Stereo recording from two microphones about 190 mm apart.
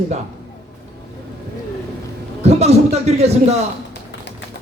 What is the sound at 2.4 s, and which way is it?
A man's voice, 35° right (ahead or behind).